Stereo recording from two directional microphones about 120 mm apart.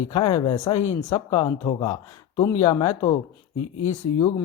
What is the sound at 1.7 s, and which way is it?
Speech, 45° left (ahead or behind).